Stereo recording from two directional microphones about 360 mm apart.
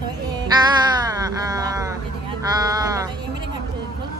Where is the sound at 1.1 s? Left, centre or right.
Centre.